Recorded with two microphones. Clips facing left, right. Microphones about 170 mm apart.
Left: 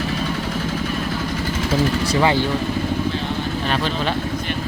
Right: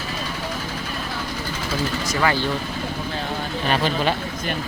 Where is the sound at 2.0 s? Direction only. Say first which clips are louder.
Left 2 dB; 20° left (ahead or behind).